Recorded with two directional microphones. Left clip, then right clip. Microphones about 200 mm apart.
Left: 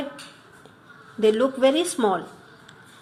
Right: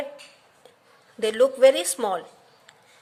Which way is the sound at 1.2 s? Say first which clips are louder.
Right 2 dB; 30° right (ahead or behind).